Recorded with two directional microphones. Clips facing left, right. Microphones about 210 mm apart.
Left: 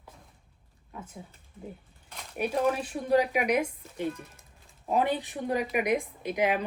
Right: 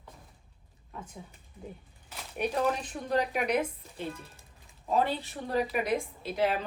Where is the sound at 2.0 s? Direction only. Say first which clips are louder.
Even; 5° right (ahead or behind).